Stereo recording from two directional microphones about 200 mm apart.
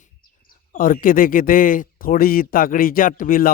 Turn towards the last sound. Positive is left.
turn(degrees=45)  # may be behind; listen again after turning